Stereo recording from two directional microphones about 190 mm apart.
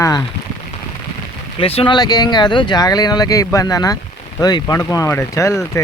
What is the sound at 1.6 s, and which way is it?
Speech, 30° left (ahead or behind).